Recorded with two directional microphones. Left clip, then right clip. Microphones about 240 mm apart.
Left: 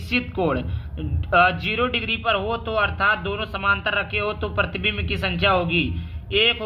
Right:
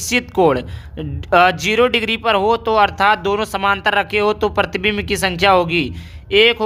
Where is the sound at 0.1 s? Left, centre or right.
Right.